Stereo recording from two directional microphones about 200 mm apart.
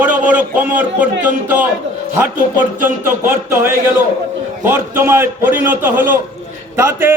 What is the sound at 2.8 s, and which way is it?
A man's voice, 10° right (ahead or behind).